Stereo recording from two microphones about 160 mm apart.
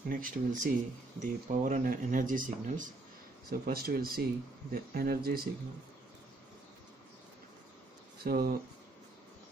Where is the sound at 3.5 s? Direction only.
70° right (ahead or behind).